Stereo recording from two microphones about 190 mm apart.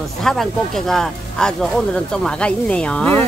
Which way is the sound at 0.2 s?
Centre (ahead or behind).